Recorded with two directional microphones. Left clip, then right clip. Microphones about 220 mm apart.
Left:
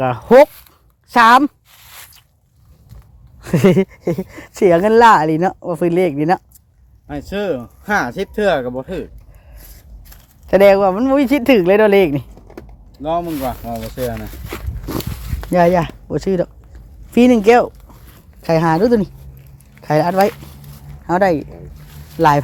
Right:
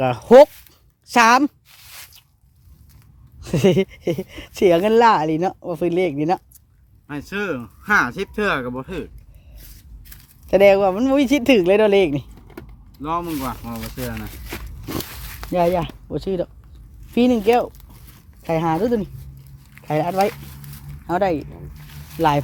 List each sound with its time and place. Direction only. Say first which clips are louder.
0.0 s speech: left 1 dB; 10° right (ahead or behind)
1.0 s zipper: left 4 dB; 5° right (ahead or behind); by 2.2 s 10° left (ahead or behind)
3.4 s a sound: left 4 dB; 15° left (ahead or behind)
4.3 s speech: left 3 dB; 5° left (ahead or behind)
7.1 s speech: left 5 dB; 5° right (ahead or behind)
9.6 s scrape: left 1 dB; 10° right (ahead or behind)
10.4 s speech: left 3 dB; 5° left (ahead or behind)
13.0 s speech: left 5 dB; 10° right (ahead or behind)
13.7 s speech: left 8 dB; 5° left (ahead or behind)
14.8 s a sound: left 4 dB; 5° left (ahead or behind)
17.2 s speech: left 6 dB; 20° left (ahead or behind)
17.7 s a sound: left 6 dB; 15° left (ahead or behind)
19.8 s speech: left 6 dB; 15° left (ahead or behind)